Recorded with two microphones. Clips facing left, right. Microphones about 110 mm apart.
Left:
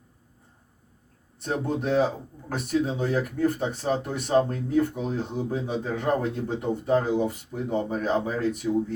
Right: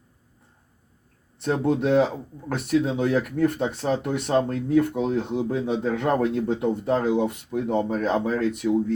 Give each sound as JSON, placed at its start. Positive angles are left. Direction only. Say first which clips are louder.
{"t": 1.4, "sound": "speech", "louder": "right 5 dB", "side_deg": -75}
{"t": 2.5, "sound": "speech", "louder": "right 3 dB", "side_deg": -65}